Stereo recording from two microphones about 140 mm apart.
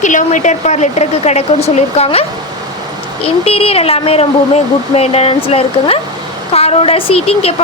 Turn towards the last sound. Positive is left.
turn(degrees=45)  # may be behind; listen again after turning